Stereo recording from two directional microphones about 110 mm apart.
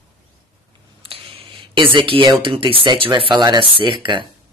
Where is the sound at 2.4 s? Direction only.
50° right (ahead or behind).